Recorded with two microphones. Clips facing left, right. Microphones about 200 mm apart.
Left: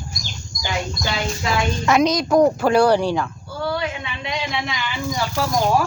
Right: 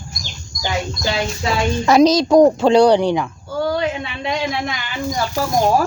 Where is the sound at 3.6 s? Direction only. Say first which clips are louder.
Right 3 dB; 40° right (ahead or behind).